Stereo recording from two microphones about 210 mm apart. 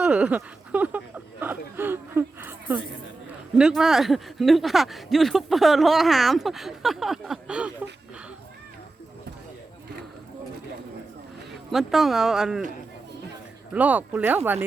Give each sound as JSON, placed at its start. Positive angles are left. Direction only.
{"t": 0.0, "sound": "a sound", "side_deg": -5}
{"t": 3.6, "sound": "speech", "side_deg": 0}
{"t": 11.7, "sound": "speech", "side_deg": 0}
{"t": 13.7, "sound": "speech", "side_deg": -5}